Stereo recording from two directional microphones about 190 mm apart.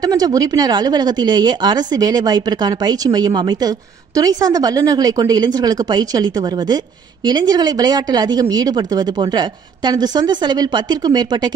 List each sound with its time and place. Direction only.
0.0 s speech: 20° right (ahead or behind)